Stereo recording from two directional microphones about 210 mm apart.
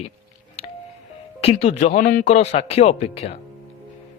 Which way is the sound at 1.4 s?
30° left (ahead or behind).